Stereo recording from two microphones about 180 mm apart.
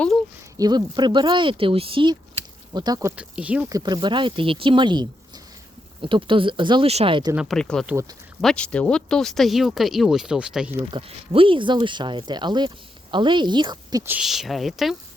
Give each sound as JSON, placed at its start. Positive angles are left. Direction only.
{"t": 0.5, "sound": "speech", "side_deg": -20}
{"t": 3.2, "sound": "speech", "side_deg": -5}
{"t": 3.7, "sound": "speech", "side_deg": -20}
{"t": 7.3, "sound": "speech", "side_deg": 0}
{"t": 10.9, "sound": "speech", "side_deg": -30}
{"t": 14.0, "sound": "speech", "side_deg": -5}